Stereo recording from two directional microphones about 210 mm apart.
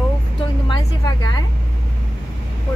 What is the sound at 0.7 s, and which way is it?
Speech, 20° left (ahead or behind).